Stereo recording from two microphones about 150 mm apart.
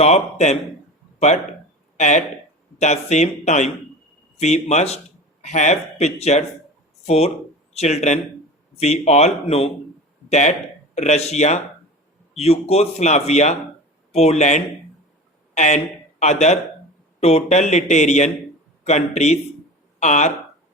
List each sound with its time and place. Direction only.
0.0 s a man's voice: 50° left (ahead or behind)
2.0 s a man's voice: 50° left (ahead or behind)